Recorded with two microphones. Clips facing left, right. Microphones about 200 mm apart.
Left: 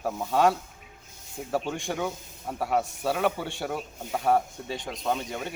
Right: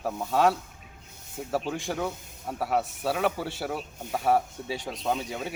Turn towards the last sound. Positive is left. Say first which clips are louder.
# even
turn(degrees=-5)  # may be behind; listen again after turning